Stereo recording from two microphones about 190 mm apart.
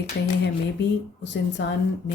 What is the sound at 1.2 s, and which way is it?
Speech, 65° left (ahead or behind).